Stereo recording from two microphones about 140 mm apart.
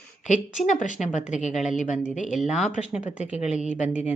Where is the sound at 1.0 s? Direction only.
55° left (ahead or behind).